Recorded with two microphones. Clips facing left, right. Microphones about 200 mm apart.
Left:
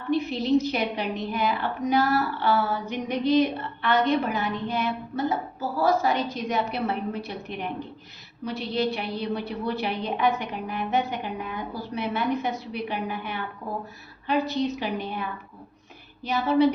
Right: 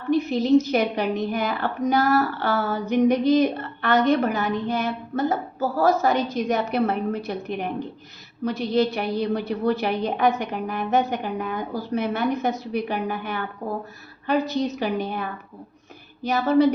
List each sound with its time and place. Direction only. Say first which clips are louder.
0.1 s a woman's voice: right 4 dB; 45° right (ahead or behind)